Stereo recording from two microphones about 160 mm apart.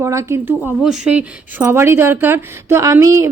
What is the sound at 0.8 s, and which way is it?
Speech, 5° right (ahead or behind).